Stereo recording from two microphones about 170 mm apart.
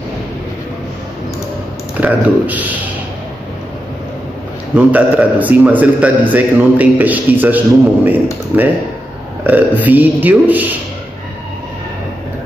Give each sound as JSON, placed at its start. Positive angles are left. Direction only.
{"t": 2.0, "sound": "a man's voice", "side_deg": -10}
{"t": 4.7, "sound": "a man's voice", "side_deg": -10}